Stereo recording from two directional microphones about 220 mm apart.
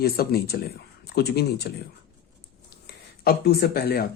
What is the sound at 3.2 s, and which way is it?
Speech, 45° left (ahead or behind).